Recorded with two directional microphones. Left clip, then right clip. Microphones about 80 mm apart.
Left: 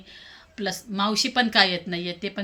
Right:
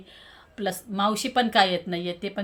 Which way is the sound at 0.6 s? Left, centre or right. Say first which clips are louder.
Right 1 dB; right.